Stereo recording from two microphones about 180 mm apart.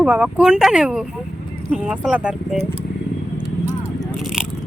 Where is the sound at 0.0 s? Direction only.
5° right (ahead or behind).